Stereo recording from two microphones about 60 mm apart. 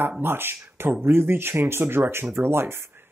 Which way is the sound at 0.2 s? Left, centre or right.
Right.